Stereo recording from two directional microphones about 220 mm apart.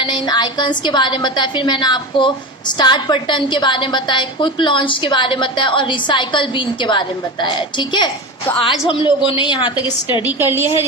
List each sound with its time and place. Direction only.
0.0 s a woman's voice: 20° left (ahead or behind)
10.2 s a woman's voice: 10° right (ahead or behind)